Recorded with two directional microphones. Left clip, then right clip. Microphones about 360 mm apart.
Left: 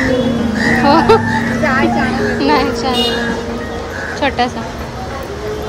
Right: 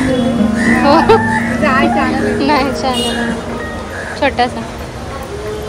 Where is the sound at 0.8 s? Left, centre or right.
Centre.